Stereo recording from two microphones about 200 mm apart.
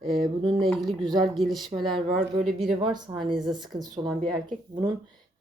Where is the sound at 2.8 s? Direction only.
20° right (ahead or behind).